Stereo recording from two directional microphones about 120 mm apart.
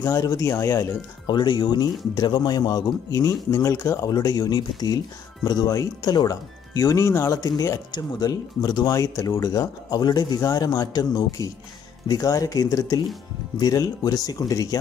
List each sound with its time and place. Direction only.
0.0 s speech: 30° left (ahead or behind)